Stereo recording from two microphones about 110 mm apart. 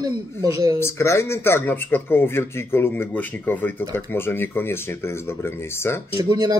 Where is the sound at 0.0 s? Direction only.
35° right (ahead or behind).